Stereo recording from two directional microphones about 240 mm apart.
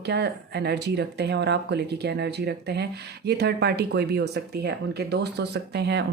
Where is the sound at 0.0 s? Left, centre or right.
Right.